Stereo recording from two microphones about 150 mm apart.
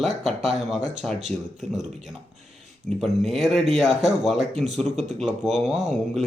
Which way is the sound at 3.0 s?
Centre (ahead or behind).